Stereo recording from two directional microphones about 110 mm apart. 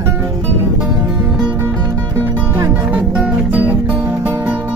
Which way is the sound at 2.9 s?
15° right (ahead or behind).